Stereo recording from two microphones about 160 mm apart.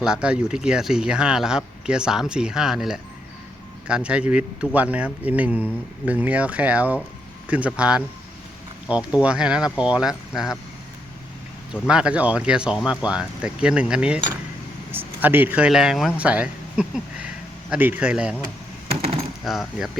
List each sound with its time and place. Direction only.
0.0 s speech: 5° right (ahead or behind)
9.2 s speech: 5° right (ahead or behind)
11.7 s speech: 5° right (ahead or behind)
18.9 s speech: 40° right (ahead or behind)
19.5 s speech: centre (ahead or behind)